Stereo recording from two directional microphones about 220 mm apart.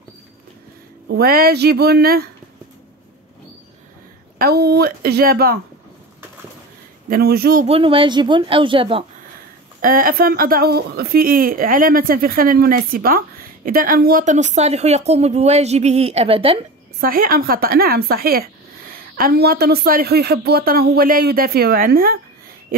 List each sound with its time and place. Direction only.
1.0 s a woman's voice: 45° right (ahead or behind)
4.4 s a woman's voice: 45° right (ahead or behind)
7.1 s a woman's voice: 45° right (ahead or behind)
7.6 s speech: 25° right (ahead or behind)
9.8 s a woman's voice: 40° right (ahead or behind)
17.0 s a woman's voice: 40° right (ahead or behind)